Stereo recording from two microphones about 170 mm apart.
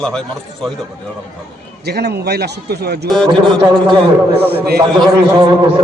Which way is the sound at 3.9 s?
35° right (ahead or behind).